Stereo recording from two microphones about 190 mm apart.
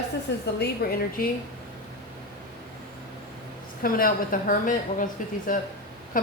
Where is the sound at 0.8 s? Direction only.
55° left (ahead or behind).